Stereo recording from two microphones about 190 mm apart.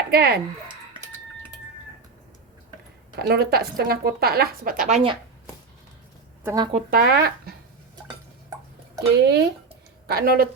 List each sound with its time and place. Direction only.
0.1 s a woman's voice: 55° right (ahead or behind)
3.2 s a woman's voice: 55° right (ahead or behind); by 5.1 s 35° right (ahead or behind)
6.4 s speech: 15° right (ahead or behind)
6.9 s a woman's voice: 55° right (ahead or behind)
9.1 s a woman's voice: 60° right (ahead or behind)